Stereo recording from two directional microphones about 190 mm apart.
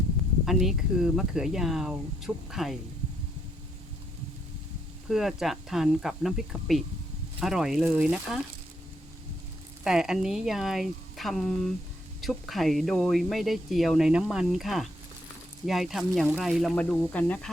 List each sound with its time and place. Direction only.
0.4 s speech: centre (ahead or behind)
5.0 s speech: centre (ahead or behind)
9.8 s speech: 5° right (ahead or behind)